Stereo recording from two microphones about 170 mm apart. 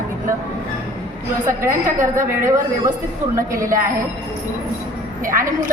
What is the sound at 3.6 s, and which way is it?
Speech, 55° right (ahead or behind).